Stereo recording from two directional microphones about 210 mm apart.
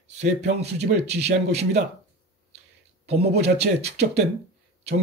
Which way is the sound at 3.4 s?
30° right (ahead or behind).